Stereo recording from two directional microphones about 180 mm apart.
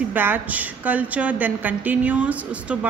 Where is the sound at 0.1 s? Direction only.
10° right (ahead or behind).